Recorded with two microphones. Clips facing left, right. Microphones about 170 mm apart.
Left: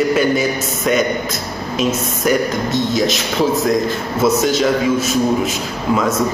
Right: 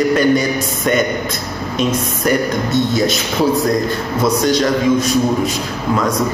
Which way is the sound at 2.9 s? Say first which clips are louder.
Right 1 dB; centre (ahead or behind).